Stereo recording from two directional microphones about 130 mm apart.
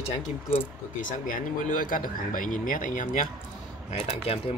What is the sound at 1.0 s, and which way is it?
Speech, 90° left.